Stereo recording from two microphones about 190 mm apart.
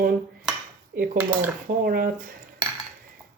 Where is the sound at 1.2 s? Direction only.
10° right (ahead or behind).